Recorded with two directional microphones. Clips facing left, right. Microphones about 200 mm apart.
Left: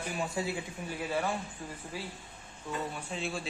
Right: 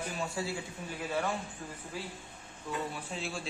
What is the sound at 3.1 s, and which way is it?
Speech, centre (ahead or behind).